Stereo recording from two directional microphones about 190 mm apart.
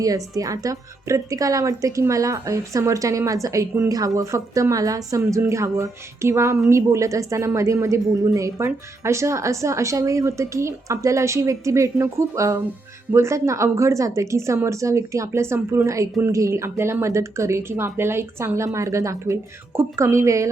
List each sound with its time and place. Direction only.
0.0 s a woman's voice: 20° right (ahead or behind)